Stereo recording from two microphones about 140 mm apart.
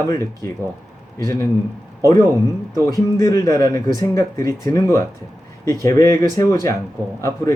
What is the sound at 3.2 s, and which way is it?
Speech, 25° left (ahead or behind).